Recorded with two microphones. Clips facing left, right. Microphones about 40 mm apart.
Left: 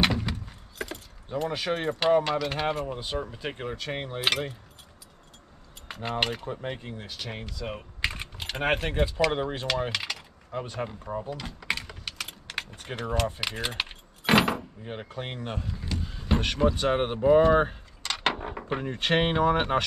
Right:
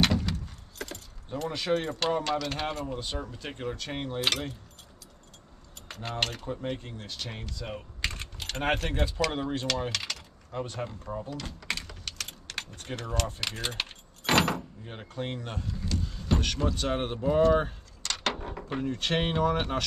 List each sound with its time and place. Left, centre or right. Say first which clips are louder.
0.0 s speech: left 1 dB; centre
5.9 s cutlery: left 4 dB; centre